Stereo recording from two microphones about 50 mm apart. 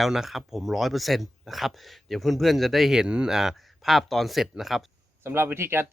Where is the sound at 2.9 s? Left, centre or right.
Centre.